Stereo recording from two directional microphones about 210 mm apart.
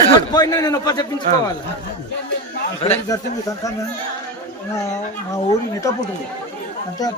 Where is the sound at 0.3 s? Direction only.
15° left (ahead or behind).